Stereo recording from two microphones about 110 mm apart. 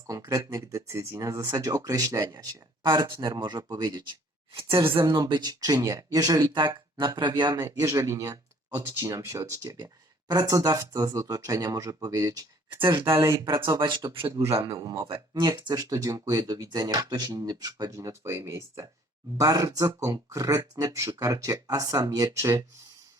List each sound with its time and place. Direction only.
0.1 s speech: 30° right (ahead or behind)
5.0 s speech: 35° right (ahead or behind)
13.1 s speech: 25° right (ahead or behind)
13.7 s speech: 45° right (ahead or behind)
14.3 s speech: 30° right (ahead or behind)